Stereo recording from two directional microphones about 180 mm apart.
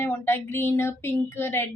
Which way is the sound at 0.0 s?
10° left (ahead or behind).